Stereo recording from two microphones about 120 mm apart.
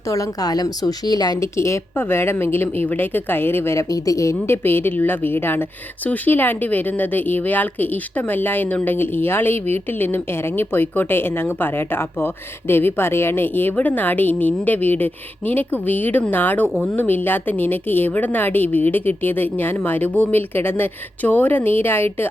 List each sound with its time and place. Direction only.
0.1 s a woman's voice: 30° left (ahead or behind)
16.6 s speech: 5° left (ahead or behind)
16.9 s speech: 15° left (ahead or behind)